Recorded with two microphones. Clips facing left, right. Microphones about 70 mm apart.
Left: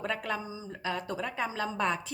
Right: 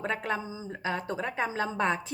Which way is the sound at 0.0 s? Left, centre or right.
Right.